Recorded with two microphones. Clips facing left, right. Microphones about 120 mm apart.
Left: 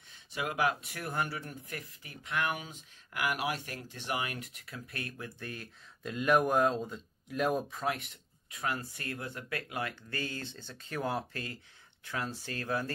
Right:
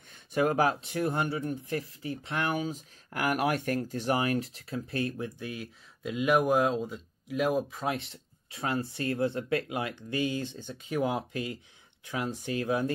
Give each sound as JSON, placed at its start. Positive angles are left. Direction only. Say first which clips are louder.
{"t": 0.1, "sound": "speech", "louder": "right 10 dB", "side_deg": -45}
{"t": 5.4, "sound": "speech", "louder": "right 5 dB", "side_deg": -5}
{"t": 7.8, "sound": "speech", "louder": "right 2 dB", "side_deg": -25}